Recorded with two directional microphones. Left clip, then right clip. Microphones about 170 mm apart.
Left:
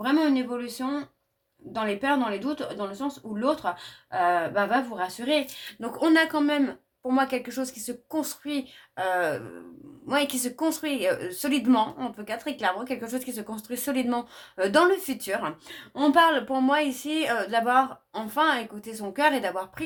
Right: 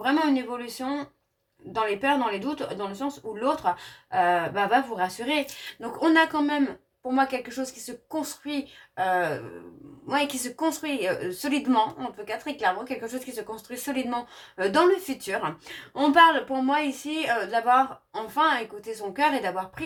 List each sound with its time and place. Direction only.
0.0 s speech: 30° left (ahead or behind)
5.8 s speech: 45° left (ahead or behind)